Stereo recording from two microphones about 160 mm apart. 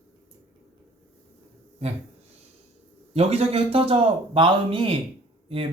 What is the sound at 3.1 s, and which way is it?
A man's voice, 40° right (ahead or behind).